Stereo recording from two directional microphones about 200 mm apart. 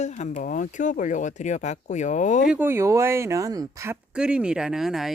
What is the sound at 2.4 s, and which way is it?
Speech, 10° right (ahead or behind).